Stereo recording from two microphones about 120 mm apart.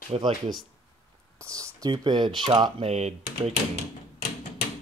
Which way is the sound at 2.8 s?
65° right (ahead or behind).